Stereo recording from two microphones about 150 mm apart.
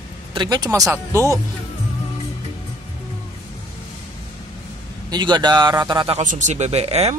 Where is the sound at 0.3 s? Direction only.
30° right (ahead or behind).